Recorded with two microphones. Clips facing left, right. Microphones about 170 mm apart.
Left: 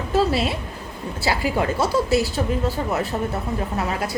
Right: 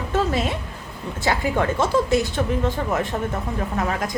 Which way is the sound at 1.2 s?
5° left (ahead or behind).